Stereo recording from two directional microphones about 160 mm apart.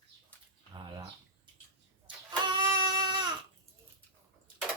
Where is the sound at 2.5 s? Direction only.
25° right (ahead or behind).